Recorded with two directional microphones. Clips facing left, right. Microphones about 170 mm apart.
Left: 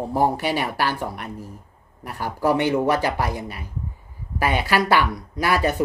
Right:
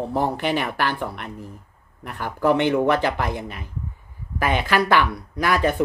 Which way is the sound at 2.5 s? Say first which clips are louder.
Right 1 dB; 10° left (ahead or behind).